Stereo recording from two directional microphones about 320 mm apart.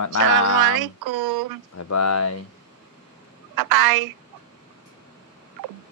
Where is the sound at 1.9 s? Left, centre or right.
Left.